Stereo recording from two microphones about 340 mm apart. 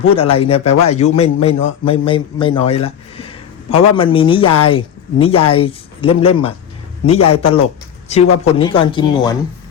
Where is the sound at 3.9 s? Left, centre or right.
Centre.